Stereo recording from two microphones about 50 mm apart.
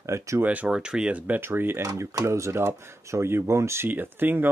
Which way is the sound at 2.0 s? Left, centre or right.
Right.